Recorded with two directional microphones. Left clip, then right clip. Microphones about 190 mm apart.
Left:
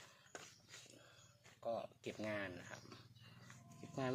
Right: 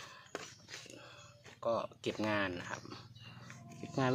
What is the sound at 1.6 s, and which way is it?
Speech, 25° right (ahead or behind).